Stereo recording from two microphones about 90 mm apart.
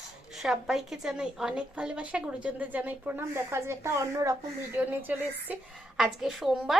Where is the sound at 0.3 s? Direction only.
5° right (ahead or behind); by 4.4 s 35° right (ahead or behind).